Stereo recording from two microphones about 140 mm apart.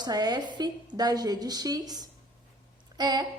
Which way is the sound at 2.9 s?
30° right (ahead or behind).